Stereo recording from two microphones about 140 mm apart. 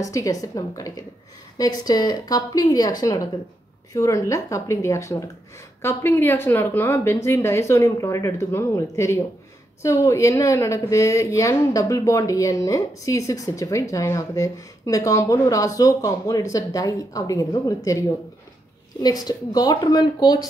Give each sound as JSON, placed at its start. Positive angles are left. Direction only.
{"t": 0.0, "sound": "a woman's voice", "side_deg": 25}